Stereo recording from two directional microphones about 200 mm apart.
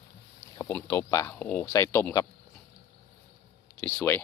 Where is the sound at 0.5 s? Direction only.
15° left (ahead or behind).